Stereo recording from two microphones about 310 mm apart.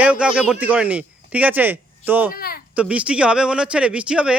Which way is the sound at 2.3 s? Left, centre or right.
Left.